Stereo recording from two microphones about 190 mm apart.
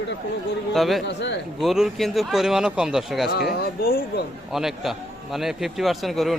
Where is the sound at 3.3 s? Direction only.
55° left (ahead or behind).